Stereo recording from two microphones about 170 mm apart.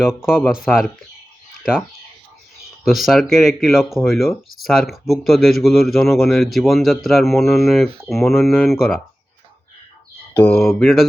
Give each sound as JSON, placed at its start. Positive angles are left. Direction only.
{"t": 0.0, "sound": "speech", "side_deg": -5}
{"t": 2.8, "sound": "speech", "side_deg": 0}
{"t": 10.3, "sound": "speech", "side_deg": 5}